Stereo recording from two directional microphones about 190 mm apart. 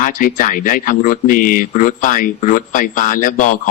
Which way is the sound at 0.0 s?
45° left (ahead or behind).